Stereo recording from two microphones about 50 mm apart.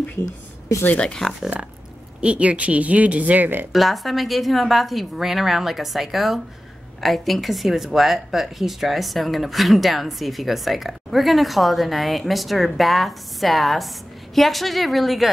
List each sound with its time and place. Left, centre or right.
1.0 s speech: centre
2.2 s speech: right
3.7 s speech: centre